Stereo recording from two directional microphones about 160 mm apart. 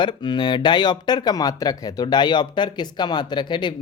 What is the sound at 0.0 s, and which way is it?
Speech, 30° left (ahead or behind).